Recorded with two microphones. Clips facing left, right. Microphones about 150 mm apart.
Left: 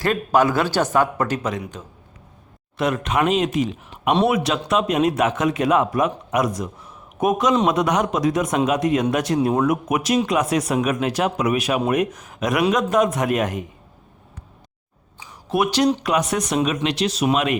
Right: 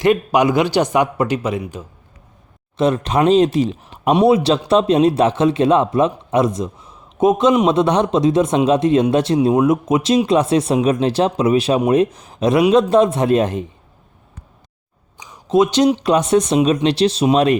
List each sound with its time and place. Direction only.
0.0 s speech: 15° right (ahead or behind)
2.7 s a man's voice: 30° right (ahead or behind)
15.2 s a sound: 20° right (ahead or behind)
16.0 s a man's voice: 25° right (ahead or behind)